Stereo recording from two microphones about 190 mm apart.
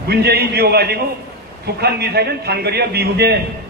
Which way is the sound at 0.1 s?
60° right (ahead or behind).